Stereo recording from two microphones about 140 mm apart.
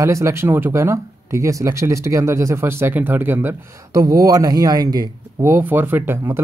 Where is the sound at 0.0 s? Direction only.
20° right (ahead or behind).